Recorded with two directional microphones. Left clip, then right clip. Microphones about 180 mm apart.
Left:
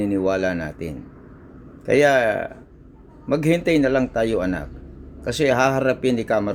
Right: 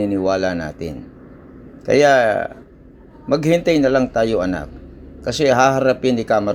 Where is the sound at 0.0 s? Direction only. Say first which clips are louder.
Right 3 dB; 5° left (ahead or behind).